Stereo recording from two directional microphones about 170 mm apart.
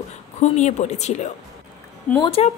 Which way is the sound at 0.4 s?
40° left (ahead or behind).